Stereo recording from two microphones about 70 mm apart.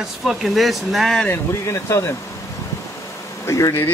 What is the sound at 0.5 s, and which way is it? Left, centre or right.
Speech, centre.